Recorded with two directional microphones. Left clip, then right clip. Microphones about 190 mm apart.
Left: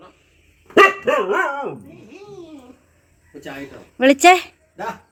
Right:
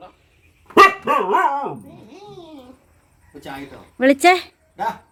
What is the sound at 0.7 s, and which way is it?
Dog, 65° right (ahead or behind).